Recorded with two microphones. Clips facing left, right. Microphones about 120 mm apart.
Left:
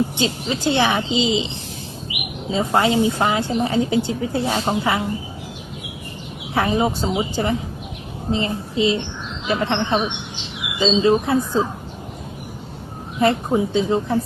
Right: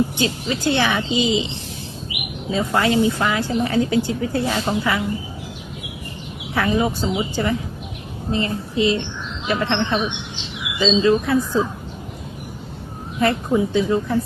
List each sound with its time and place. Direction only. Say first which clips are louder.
0.2 s speech: even; 25° left (ahead or behind)
2.5 s speech: left 1 dB; 20° left (ahead or behind)
6.5 s speech: left 1 dB; 20° left (ahead or behind)
13.1 s speech: left 1 dB; 25° left (ahead or behind)